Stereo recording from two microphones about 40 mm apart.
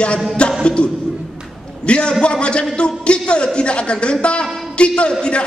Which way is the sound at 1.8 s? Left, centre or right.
Left.